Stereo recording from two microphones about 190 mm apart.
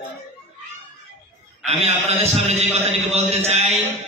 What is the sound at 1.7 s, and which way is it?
Mantra, 35° right (ahead or behind).